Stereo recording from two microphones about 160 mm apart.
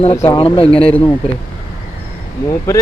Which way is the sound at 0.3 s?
35° left (ahead or behind).